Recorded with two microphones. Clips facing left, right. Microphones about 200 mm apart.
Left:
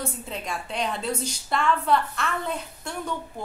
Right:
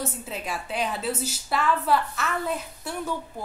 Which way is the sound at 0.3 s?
5° right (ahead or behind).